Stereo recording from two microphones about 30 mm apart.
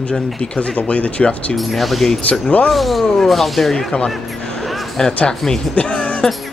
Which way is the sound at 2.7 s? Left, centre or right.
Centre.